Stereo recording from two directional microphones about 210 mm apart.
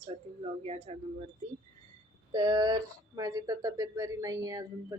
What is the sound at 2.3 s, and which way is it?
Speech, 20° right (ahead or behind).